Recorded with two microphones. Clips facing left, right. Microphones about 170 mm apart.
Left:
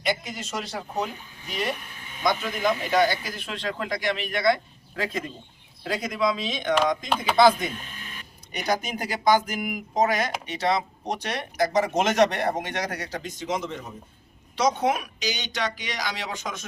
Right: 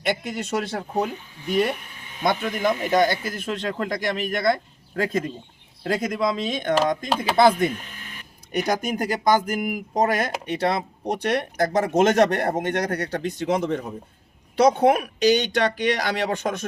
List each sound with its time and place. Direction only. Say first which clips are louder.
0.0 s speech: right 3 dB; 60° right (ahead or behind)
2.2 s a man's voice: right 2 dB; 50° right (ahead or behind)
10.1 s speech: right 3 dB; 55° right (ahead or behind)